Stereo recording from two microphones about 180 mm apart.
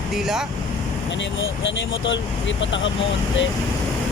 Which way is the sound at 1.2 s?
90° left.